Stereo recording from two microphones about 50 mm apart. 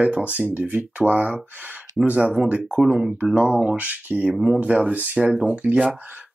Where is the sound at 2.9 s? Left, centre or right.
Centre.